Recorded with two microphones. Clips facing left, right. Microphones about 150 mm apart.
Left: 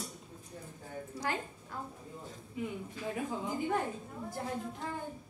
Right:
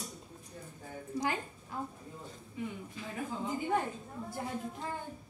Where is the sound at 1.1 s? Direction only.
5° left (ahead or behind).